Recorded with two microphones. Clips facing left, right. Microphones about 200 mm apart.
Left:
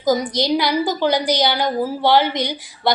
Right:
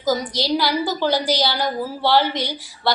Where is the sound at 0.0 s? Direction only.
20° left (ahead or behind).